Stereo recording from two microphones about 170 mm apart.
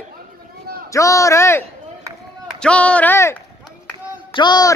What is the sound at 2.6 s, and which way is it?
Speech, 5° left (ahead or behind).